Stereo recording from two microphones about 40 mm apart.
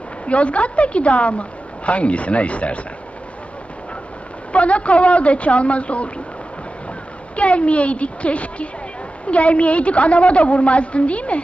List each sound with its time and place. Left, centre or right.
0.3 s a woman's voice: left
4.5 s a woman's voice: left
7.3 s a woman's voice: left